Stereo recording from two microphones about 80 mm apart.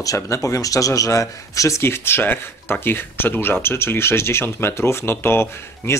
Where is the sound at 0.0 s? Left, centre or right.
Left.